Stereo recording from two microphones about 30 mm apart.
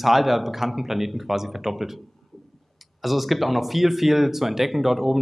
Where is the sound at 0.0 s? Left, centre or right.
Centre.